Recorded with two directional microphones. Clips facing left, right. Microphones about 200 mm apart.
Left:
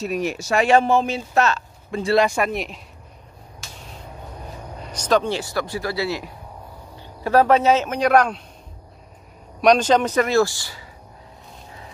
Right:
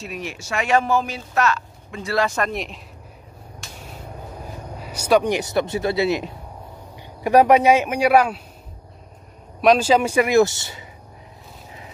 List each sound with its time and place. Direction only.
0.0 s speech: 40° left (ahead or behind)
2.2 s speech: 10° left (ahead or behind)
2.5 s speech: centre (ahead or behind)
3.6 s a sound: centre (ahead or behind)
4.7 s speech: 5° right (ahead or behind)
9.6 s speech: 5° right (ahead or behind); by 10.9 s 20° right (ahead or behind)